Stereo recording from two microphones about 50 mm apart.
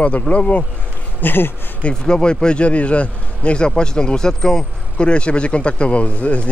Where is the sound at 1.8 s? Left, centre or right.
Centre.